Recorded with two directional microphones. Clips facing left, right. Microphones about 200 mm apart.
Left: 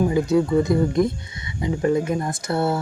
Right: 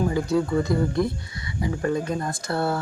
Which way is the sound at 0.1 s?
20° left (ahead or behind).